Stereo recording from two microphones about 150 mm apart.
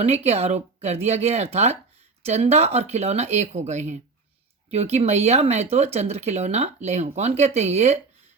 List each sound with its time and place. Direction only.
0.0 s speech: 45° right (ahead or behind)